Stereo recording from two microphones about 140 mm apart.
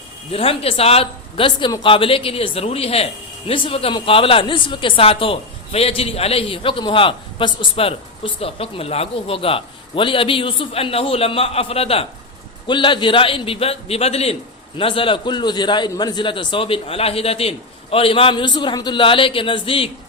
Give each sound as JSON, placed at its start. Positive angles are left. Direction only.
{"t": 0.3, "sound": "speech", "side_deg": 45}